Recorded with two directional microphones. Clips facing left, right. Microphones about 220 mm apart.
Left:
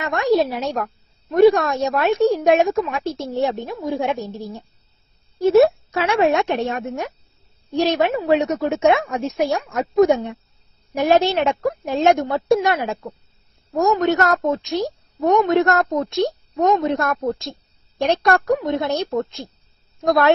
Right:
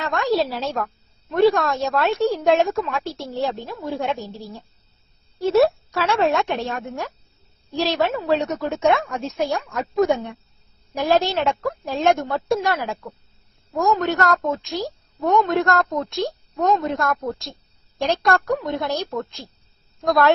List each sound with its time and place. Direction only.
0.1 s a woman's voice: 20° left (ahead or behind)